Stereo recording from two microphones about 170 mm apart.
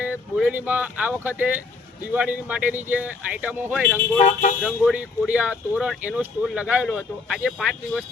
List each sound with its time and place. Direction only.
0.0 s speech: 10° right (ahead or behind)
4.2 s speech: 45° left (ahead or behind)
4.6 s speech: 5° right (ahead or behind)